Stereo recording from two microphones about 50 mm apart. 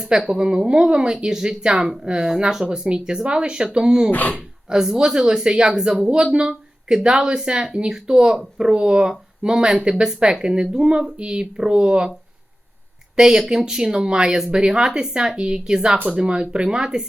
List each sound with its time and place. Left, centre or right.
0.3 s speech: centre
4.1 s speech: left
4.7 s speech: centre
13.1 s speech: centre